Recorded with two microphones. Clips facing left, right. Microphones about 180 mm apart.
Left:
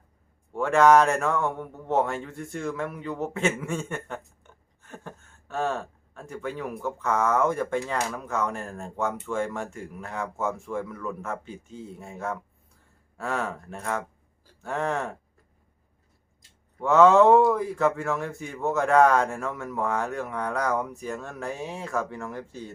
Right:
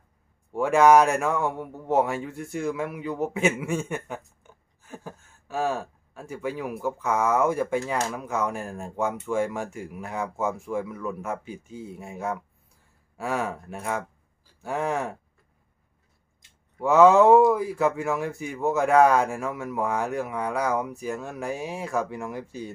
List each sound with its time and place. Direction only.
0.5 s a man's voice: 10° right (ahead or behind)
16.8 s a man's voice: 10° right (ahead or behind)